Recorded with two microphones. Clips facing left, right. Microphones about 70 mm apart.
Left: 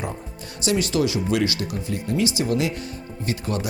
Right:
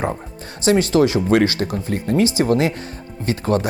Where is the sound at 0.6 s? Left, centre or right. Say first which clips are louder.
Right 7 dB; right.